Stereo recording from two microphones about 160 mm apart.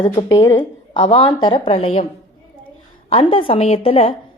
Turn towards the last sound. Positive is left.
turn(degrees=40)  # may be behind; listen again after turning